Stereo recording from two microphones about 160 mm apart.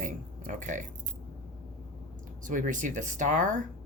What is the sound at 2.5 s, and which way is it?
Speech, 55° right (ahead or behind).